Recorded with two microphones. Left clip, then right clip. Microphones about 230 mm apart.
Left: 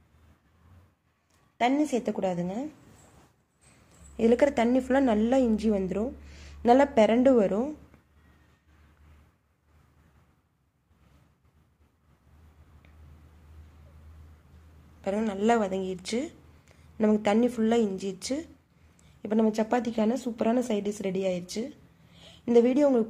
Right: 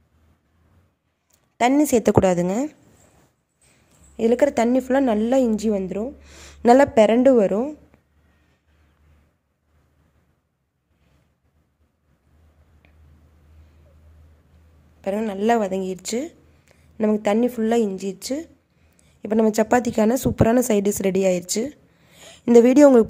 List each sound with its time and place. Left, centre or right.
1.6 s a woman's voice: right
4.2 s a woman's voice: centre
6.2 s speech: right
15.0 s speech: right